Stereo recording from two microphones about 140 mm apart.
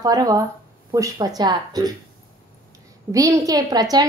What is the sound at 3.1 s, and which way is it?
Speech, 25° right (ahead or behind).